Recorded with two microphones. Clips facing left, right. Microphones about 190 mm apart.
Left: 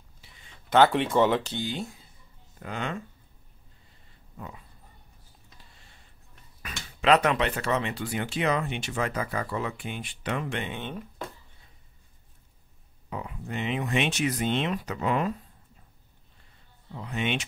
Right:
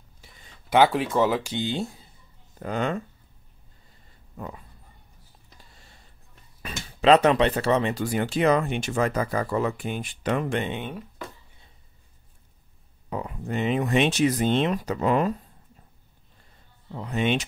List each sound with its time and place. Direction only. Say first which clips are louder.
0.2 s a sound: right 5 dB; 45° right (ahead or behind)
0.7 s speech: right 1 dB; 10° right (ahead or behind)
1.5 s speech: right 4 dB; 25° right (ahead or behind)
2.6 s speech: right 6 dB; 40° right (ahead or behind)
6.6 s speech: right 5 dB; 30° right (ahead or behind)
10.8 s speech: right 2 dB; 5° right (ahead or behind)
13.1 s speech: right 5 dB; 40° right (ahead or behind)
16.9 s speech: right 5 dB; 40° right (ahead or behind)